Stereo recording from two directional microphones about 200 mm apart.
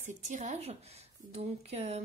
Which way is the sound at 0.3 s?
35° right (ahead or behind).